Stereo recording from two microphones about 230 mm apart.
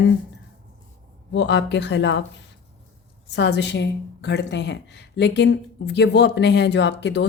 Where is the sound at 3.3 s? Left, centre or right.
Left.